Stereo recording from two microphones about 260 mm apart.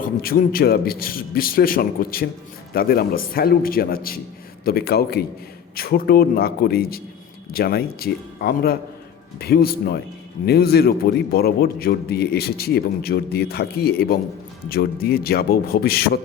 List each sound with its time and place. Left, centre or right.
0.0 s a man's voice: left